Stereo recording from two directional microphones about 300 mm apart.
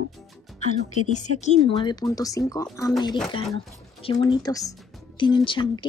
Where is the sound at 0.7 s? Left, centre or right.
Left.